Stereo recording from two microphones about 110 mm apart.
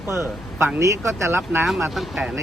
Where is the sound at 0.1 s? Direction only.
25° right (ahead or behind).